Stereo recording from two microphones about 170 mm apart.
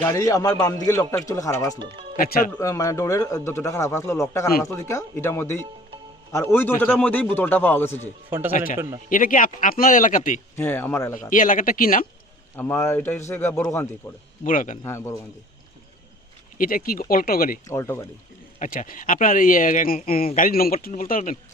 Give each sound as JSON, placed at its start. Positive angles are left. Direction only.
{"t": 0.0, "sound": "speech", "side_deg": 20}
{"t": 2.1, "sound": "speech", "side_deg": 55}
{"t": 2.6, "sound": "speech", "side_deg": 20}
{"t": 8.3, "sound": "a man's voice", "side_deg": -10}
{"t": 8.5, "sound": "speech", "side_deg": 50}
{"t": 10.6, "sound": "speech", "side_deg": 10}
{"t": 11.3, "sound": "speech", "side_deg": 50}
{"t": 12.5, "sound": "speech", "side_deg": 15}
{"t": 14.4, "sound": "speech", "side_deg": 50}
{"t": 14.8, "sound": "speech", "side_deg": 15}
{"t": 16.6, "sound": "speech", "side_deg": 55}
{"t": 17.7, "sound": "speech", "side_deg": 15}
{"t": 18.6, "sound": "speech", "side_deg": 50}